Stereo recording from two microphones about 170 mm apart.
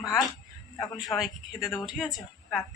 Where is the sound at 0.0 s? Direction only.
25° left (ahead or behind).